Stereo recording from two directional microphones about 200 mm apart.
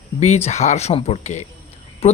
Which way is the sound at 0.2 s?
35° left (ahead or behind).